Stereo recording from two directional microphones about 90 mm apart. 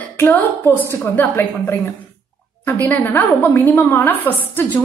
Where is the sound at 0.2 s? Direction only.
20° left (ahead or behind).